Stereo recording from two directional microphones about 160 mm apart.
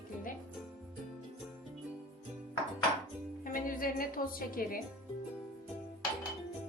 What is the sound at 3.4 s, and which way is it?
A woman's voice, 60° left (ahead or behind).